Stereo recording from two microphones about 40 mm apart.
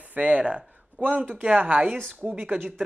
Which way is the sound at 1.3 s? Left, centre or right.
Right.